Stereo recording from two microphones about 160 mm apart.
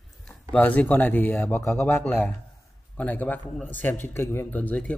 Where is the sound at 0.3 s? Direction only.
10° left (ahead or behind).